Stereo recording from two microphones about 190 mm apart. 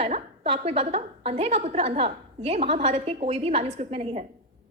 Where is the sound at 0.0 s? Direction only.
30° right (ahead or behind).